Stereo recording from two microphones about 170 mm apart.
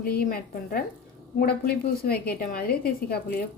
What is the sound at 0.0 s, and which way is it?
A woman's voice, 65° left (ahead or behind).